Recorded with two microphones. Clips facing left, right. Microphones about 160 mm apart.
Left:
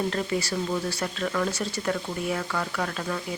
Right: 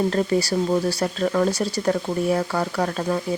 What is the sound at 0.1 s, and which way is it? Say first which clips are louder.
Speech: right 7 dB; 35° right (ahead or behind).